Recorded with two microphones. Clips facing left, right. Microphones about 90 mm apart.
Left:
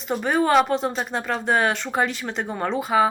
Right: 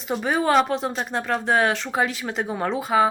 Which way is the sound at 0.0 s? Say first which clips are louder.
Left 1 dB; centre (ahead or behind).